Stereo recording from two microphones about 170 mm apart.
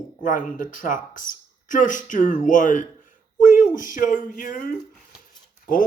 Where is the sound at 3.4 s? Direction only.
50° left (ahead or behind).